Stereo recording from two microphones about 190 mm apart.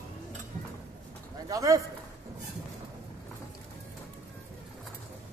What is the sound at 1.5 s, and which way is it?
Speech, 15° right (ahead or behind).